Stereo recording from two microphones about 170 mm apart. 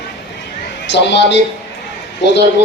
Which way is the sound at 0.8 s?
90° left.